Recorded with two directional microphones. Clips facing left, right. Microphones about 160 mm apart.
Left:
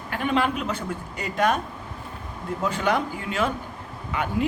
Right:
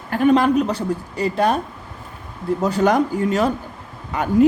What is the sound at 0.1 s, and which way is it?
A woman's voice, 40° right (ahead or behind).